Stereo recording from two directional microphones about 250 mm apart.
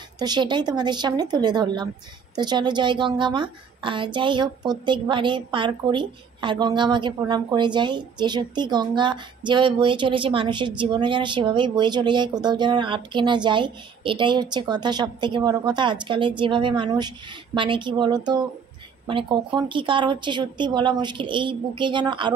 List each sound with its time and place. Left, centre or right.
0.2 s a woman's voice: centre